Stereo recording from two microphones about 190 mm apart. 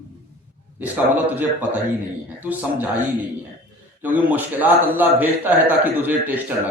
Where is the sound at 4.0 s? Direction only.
10° right (ahead or behind).